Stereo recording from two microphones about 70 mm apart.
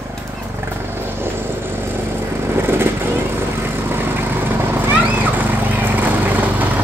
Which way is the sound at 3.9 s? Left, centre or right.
Right.